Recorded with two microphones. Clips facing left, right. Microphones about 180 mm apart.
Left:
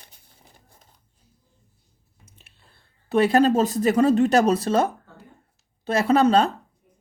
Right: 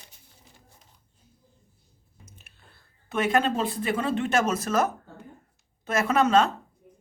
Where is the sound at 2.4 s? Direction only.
30° left (ahead or behind).